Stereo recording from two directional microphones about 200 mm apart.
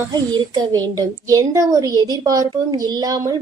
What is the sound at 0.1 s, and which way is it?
A woman's voice, 20° right (ahead or behind).